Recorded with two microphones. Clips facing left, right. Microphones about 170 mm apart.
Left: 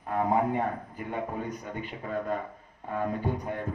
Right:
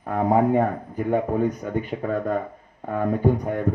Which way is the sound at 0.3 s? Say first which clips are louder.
Right 8 dB; 45° right (ahead or behind).